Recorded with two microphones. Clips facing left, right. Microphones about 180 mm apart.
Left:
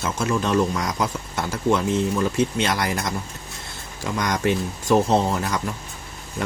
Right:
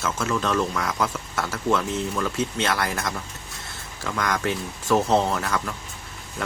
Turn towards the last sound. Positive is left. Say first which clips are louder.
# left 3 dB
turn(degrees=20)  # may be behind; listen again after turning